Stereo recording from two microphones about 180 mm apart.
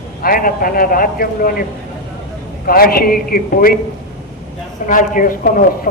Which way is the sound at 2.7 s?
55° left (ahead or behind).